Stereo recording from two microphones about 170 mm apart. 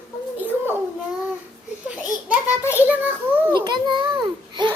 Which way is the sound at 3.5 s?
25° right (ahead or behind).